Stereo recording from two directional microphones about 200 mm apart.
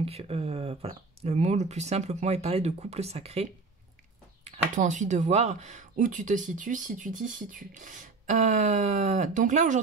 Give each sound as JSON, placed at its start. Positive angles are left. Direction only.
{"t": 0.0, "sound": "speech", "side_deg": -30}
{"t": 4.5, "sound": "speech", "side_deg": -35}